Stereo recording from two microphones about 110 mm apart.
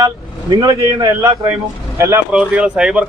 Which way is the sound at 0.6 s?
35° right (ahead or behind).